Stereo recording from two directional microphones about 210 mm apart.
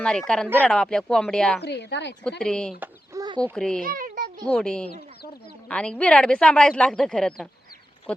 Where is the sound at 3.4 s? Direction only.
5° left (ahead or behind).